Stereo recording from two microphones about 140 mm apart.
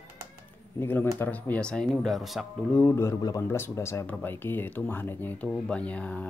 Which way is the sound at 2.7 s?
15° left (ahead or behind).